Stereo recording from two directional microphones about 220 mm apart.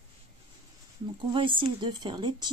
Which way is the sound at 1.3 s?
25° right (ahead or behind).